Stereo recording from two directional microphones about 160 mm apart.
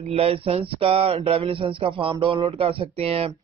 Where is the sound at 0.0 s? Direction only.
40° right (ahead or behind).